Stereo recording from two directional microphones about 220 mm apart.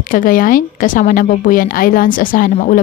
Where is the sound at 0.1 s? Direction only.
40° left (ahead or behind).